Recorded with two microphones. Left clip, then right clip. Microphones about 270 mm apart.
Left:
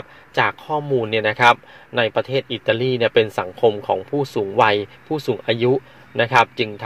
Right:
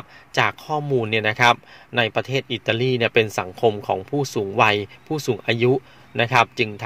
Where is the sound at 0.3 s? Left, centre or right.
Right.